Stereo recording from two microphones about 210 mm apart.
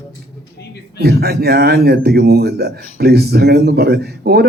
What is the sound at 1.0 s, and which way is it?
A man's voice, 50° right (ahead or behind).